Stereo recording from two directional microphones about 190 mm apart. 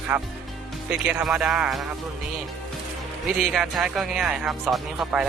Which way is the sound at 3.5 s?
Centre (ahead or behind).